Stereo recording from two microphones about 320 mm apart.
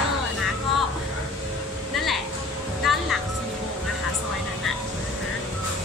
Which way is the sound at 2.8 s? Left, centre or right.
Centre.